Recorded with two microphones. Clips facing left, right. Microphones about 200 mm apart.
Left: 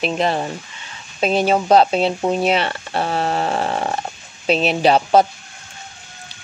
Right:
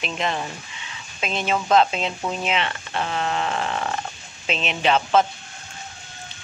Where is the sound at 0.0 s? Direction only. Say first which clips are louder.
Left 7 dB; 35° left (ahead or behind).